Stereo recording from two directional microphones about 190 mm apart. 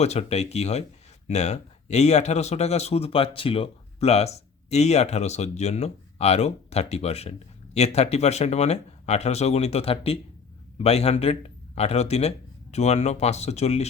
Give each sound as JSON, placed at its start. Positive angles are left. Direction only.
{"t": 0.0, "sound": "speech", "side_deg": 35}